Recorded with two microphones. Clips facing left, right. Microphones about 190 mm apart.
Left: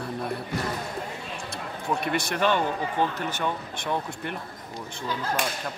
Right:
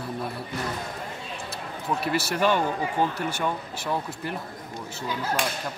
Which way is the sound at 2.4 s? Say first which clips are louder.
Right 1 dB; 10° right (ahead or behind).